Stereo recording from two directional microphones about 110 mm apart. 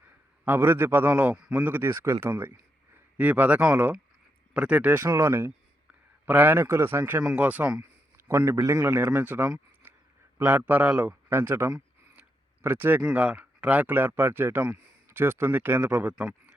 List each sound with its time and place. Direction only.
0.4 s a man's voice: 20° right (ahead or behind)
8.6 s a man's voice: 30° right (ahead or behind)
9.1 s speech: 15° right (ahead or behind)
9.8 s a sound: 20° right (ahead or behind)
10.3 s speech: 15° right (ahead or behind)
13.0 s speech: 10° right (ahead or behind)